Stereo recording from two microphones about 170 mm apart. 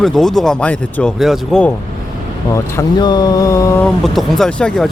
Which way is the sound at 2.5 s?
20° left (ahead or behind).